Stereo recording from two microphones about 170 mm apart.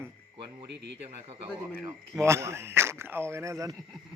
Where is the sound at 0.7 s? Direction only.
90° right.